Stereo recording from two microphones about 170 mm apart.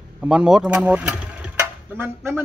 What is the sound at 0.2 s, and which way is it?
A man's voice, 5° right (ahead or behind).